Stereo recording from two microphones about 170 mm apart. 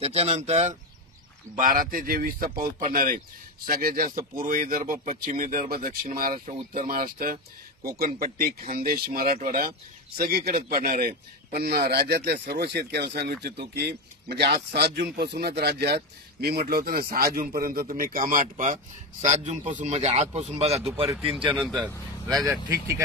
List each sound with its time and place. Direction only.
0.0 s speech: 40° right (ahead or behind)
1.5 s a man's voice: 55° right (ahead or behind); by 21.1 s 35° right (ahead or behind)
21.3 s speech: centre (ahead or behind)
22.5 s speech: 15° right (ahead or behind)